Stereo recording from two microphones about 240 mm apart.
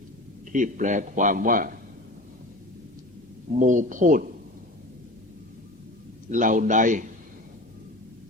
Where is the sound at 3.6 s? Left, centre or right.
Right.